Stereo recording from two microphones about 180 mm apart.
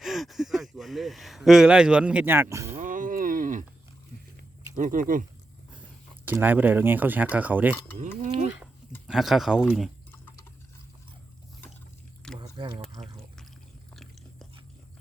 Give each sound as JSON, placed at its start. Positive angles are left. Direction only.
{"t": 0.0, "sound": "speech", "side_deg": 0}
{"t": 2.7, "sound": "a sound", "side_deg": -45}
{"t": 4.7, "sound": "speech", "side_deg": -45}
{"t": 6.2, "sound": "speech", "side_deg": -10}
{"t": 9.0, "sound": "speech", "side_deg": 0}
{"t": 12.4, "sound": "liquid", "side_deg": -25}
{"t": 13.9, "sound": "biting", "side_deg": 0}